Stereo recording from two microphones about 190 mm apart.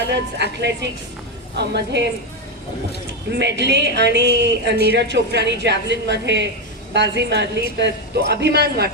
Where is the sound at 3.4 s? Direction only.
65° right (ahead or behind).